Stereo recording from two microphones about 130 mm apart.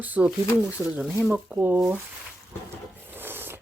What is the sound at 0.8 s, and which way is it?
Speech, centre (ahead or behind).